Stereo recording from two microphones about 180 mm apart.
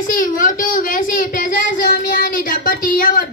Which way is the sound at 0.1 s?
50° left (ahead or behind).